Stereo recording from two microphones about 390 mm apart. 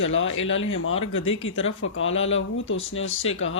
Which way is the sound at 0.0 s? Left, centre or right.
Left.